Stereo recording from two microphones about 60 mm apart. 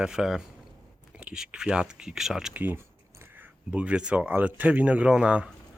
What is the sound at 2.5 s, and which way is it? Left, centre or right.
Speech, right.